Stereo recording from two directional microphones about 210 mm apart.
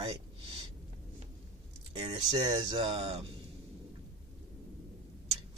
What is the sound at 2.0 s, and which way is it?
Speech, 25° right (ahead or behind).